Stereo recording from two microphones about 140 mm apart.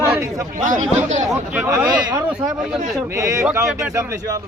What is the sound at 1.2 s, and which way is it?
Speech, 15° right (ahead or behind).